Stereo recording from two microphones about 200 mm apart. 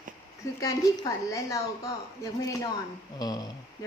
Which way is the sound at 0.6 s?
15° left (ahead or behind).